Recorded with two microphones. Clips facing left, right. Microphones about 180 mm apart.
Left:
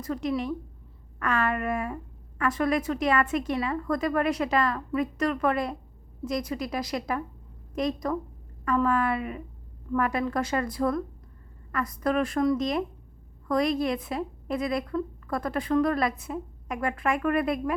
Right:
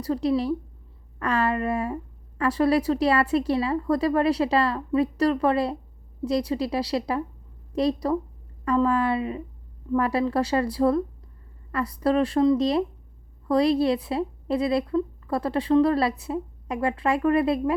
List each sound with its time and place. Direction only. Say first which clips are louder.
0.0 s a woman's voice: right 5 dB; 35° right (ahead or behind)